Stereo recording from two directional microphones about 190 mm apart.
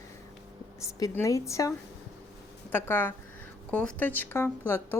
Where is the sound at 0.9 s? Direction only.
15° left (ahead or behind).